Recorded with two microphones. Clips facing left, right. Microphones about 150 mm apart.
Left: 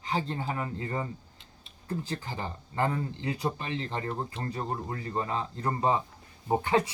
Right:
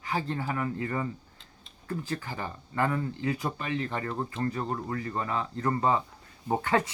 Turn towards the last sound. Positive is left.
turn(degrees=20)  # may be behind; listen again after turning